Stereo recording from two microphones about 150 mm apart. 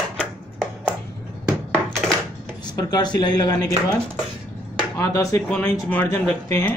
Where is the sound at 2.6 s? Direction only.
25° left (ahead or behind).